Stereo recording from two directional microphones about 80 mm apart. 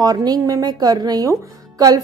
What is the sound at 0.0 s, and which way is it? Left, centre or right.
A woman's voice, right.